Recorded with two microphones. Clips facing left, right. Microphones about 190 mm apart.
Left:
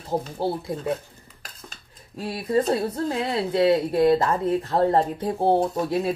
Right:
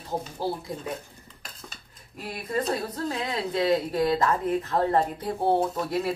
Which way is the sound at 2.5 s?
30° left (ahead or behind).